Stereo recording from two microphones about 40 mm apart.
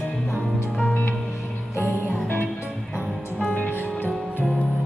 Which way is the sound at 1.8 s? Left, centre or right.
Left.